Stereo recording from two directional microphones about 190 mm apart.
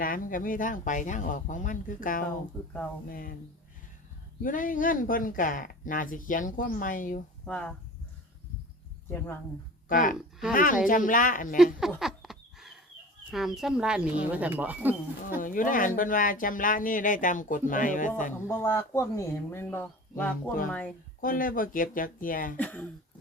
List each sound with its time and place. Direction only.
0.0 s speech: 45° left (ahead or behind)
2.5 s speech: 5° left (ahead or behind)
3.1 s speech: 50° left (ahead or behind)
4.4 s speech: 45° left (ahead or behind)
7.4 s speech: 5° left (ahead or behind)
9.0 s speech: 10° left (ahead or behind)
9.9 s speech: 45° left (ahead or behind)
11.9 s a sound: centre (ahead or behind)
13.3 s speech: centre (ahead or behind)
15.4 s speech: 45° left (ahead or behind)
18.4 s speech: 15° left (ahead or behind)
21.2 s speech: 45° left (ahead or behind)
22.5 s speech: 10° left (ahead or behind)